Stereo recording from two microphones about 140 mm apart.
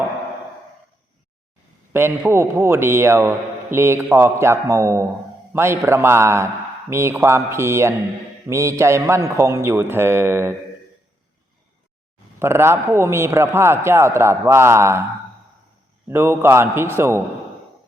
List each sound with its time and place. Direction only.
1.9 s a man's voice: 15° right (ahead or behind)
12.4 s a man's voice: 15° right (ahead or behind)
16.0 s a man's voice: 15° right (ahead or behind)